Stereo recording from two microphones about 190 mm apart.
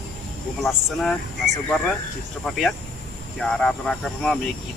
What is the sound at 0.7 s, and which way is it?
Speech, centre (ahead or behind).